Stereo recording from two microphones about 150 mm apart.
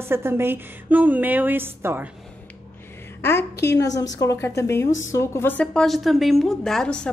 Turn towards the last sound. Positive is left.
turn(degrees=5)  # may be behind; listen again after turning